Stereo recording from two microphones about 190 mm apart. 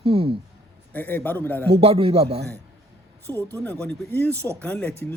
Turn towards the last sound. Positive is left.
turn(degrees=10)  # may be behind; listen again after turning